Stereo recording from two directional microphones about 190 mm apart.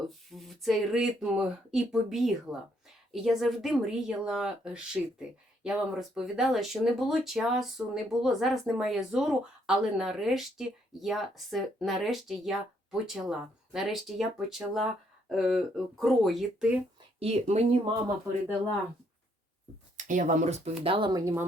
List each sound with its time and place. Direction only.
0.3 s speech: centre (ahead or behind)
17.2 s speech: 35° right (ahead or behind)
20.0 s speech: 40° right (ahead or behind); by 21.4 s 15° right (ahead or behind)